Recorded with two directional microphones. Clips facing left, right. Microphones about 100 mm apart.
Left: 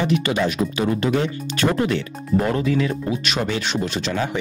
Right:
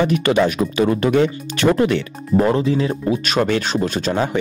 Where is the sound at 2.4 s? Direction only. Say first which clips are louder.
Right 4 dB; 30° right (ahead or behind).